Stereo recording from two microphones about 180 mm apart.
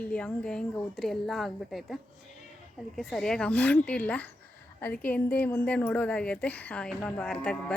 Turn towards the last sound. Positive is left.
turn(degrees=5)  # may be behind; listen again after turning